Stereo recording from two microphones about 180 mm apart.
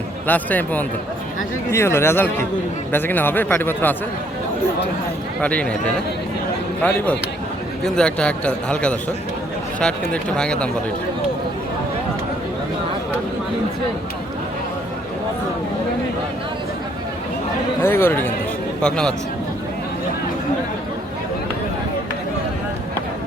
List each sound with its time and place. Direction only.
0.3 s speech: 10° left (ahead or behind)
5.4 s a man's voice: 10° left (ahead or behind)
17.8 s a man's voice: 15° left (ahead or behind)